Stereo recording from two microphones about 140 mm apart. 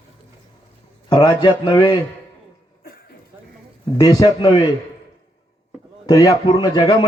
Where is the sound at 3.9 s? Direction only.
25° left (ahead or behind).